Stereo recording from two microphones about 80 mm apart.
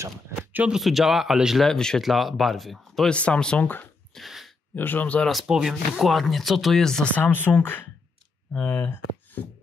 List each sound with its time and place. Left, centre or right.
0.7 s speech: centre
3.1 s speech: centre
3.6 s speech: left
4.1 s a sound: centre
4.7 s speech: left
5.3 s speech: centre
7.2 s speech: left